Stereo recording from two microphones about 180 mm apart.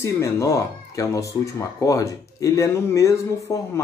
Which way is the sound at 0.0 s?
15° left (ahead or behind).